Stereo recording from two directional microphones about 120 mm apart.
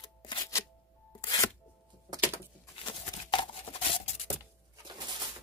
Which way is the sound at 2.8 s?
45° left (ahead or behind).